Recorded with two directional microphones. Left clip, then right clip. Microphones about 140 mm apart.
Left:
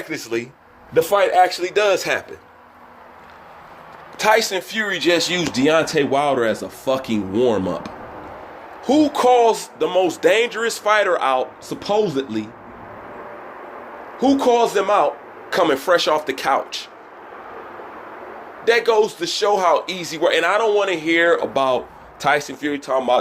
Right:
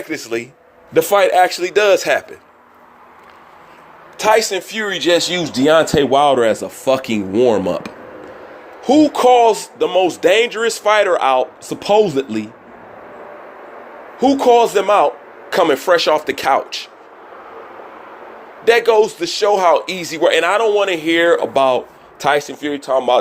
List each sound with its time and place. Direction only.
0.1 s a man's voice: 80° right
4.2 s a man's voice: 50° right (ahead or behind)
8.8 s a man's voice: 45° right (ahead or behind)
14.2 s a man's voice: 45° right (ahead or behind)
18.6 s a man's voice: 55° right (ahead or behind)